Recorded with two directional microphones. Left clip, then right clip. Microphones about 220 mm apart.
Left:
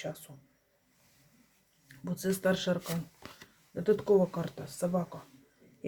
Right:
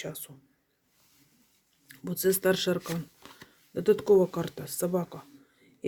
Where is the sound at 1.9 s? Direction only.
45° right (ahead or behind).